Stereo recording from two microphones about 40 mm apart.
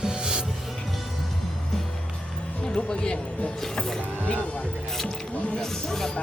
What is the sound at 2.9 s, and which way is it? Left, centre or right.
Speech, left.